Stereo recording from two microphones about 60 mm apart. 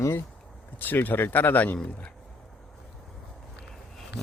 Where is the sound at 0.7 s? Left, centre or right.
Left.